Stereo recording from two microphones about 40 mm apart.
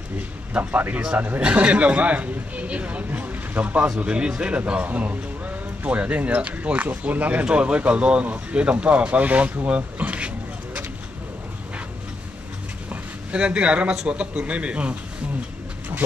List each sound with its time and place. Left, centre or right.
0.5 s speech: right
1.4 s a man's voice: right
7.4 s a man's voice: right
13.3 s a man's voice: right